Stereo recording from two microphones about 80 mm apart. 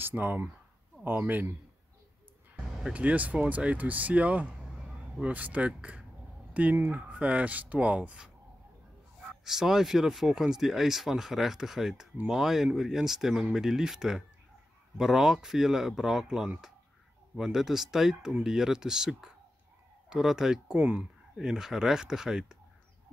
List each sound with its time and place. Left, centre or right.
0.0 s speech: right
2.9 s speech: centre
9.4 s speech: centre
20.8 s speech: centre
21.4 s speech: centre